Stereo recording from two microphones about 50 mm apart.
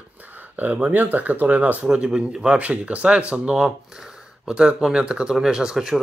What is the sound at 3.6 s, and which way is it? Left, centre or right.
Speech, centre.